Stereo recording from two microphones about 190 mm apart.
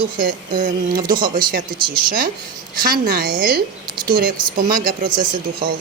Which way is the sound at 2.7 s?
50° right (ahead or behind).